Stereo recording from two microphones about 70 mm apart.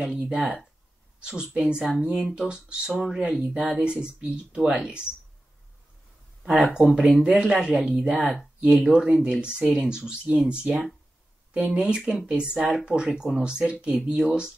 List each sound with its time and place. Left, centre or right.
0.2 s speech: centre
6.4 s speech: centre